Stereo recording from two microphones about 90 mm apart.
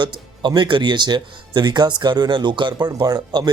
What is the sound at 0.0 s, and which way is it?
Speech, 55° right (ahead or behind).